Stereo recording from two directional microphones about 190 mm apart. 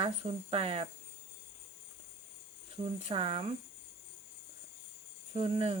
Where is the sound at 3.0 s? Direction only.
30° right (ahead or behind).